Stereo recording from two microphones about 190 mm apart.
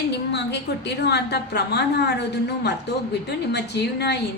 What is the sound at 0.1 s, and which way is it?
A woman's voice, 60° left (ahead or behind).